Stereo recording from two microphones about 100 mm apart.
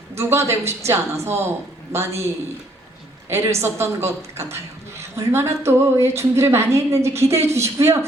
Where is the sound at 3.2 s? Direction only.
25° right (ahead or behind).